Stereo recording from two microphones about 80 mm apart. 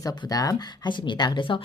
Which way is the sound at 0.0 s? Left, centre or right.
Left.